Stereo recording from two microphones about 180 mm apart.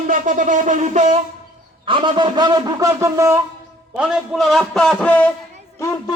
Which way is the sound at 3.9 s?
5° right (ahead or behind).